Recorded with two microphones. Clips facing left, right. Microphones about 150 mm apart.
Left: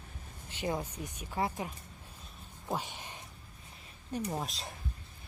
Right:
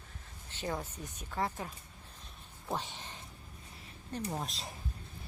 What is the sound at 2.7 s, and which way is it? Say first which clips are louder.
Speech: left 1 dB; 10° left (ahead or behind).